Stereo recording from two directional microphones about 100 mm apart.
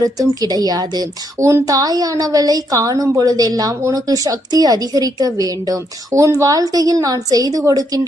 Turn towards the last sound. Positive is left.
turn(degrees=-35)  # may be behind; listen again after turning